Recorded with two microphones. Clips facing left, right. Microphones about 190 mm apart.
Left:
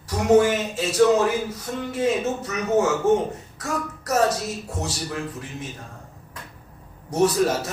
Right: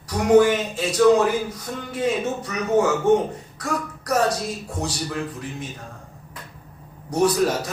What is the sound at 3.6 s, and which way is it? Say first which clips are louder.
Music: right 1 dB; 25° left (ahead or behind).